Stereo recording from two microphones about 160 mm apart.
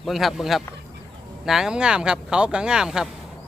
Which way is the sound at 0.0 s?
Centre (ahead or behind).